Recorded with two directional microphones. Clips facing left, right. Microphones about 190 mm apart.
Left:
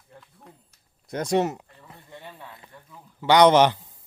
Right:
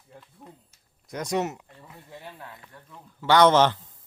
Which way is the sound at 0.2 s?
5° right (ahead or behind).